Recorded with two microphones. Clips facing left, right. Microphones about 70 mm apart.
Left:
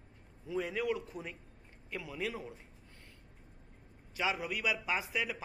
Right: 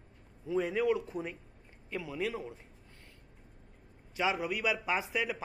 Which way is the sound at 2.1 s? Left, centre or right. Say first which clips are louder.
Right 3 dB; centre.